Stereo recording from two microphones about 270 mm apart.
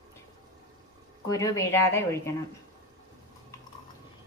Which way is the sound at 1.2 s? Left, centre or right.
Centre.